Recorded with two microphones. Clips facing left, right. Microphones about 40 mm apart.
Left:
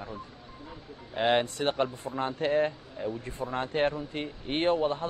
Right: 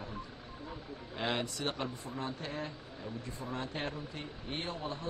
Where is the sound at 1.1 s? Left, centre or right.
Left.